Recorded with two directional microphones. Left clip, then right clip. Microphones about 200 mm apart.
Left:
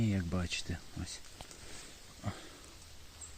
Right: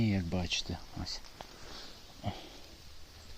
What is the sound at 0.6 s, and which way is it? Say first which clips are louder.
Speech: right 2 dB; 15° left (ahead or behind).